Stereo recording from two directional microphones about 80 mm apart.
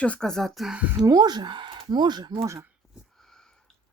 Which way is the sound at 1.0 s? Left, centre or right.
Right.